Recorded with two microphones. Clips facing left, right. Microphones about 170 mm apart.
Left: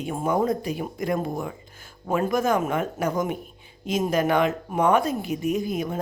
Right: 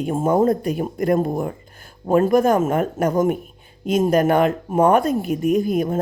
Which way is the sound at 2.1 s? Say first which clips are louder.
Right 7 dB; 50° right (ahead or behind).